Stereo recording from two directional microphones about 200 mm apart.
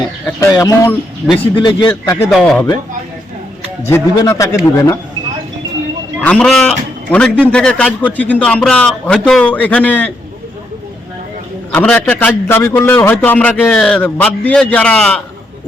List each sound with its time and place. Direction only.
0.3 s a man's voice: 15° left (ahead or behind)
1.9 s a man's voice: 10° left (ahead or behind)
3.8 s a man's voice: 15° left (ahead or behind)
6.2 s a man's voice: centre (ahead or behind)
11.7 s a man's voice: 10° left (ahead or behind)